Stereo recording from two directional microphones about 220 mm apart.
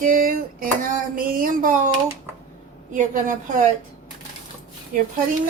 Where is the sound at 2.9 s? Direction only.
35° right (ahead or behind).